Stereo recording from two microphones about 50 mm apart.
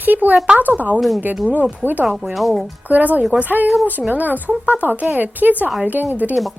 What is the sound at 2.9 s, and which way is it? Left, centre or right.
A woman's voice, right.